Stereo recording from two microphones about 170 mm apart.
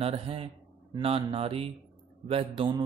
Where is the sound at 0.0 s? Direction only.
35° right (ahead or behind).